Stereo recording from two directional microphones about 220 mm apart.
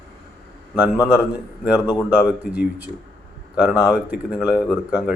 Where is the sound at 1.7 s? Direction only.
15° left (ahead or behind).